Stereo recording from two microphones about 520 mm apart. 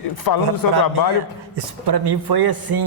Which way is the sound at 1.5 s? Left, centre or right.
Right.